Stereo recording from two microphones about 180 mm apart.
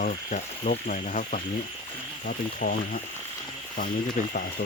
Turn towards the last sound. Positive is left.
turn(degrees=50)  # may be behind; listen again after turning